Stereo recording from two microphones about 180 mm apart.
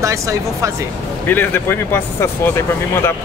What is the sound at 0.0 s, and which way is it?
Speech, 15° right (ahead or behind).